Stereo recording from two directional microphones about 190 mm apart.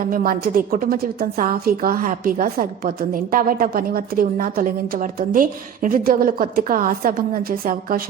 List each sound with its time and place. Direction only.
0.0 s a woman's voice: 50° right (ahead or behind)